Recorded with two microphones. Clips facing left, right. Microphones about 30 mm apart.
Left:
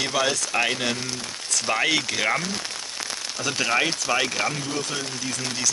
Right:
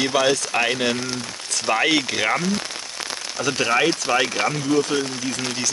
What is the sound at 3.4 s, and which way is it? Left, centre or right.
Speech, centre.